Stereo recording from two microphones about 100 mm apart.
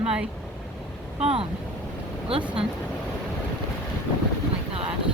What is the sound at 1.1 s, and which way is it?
Speech, 65° right (ahead or behind).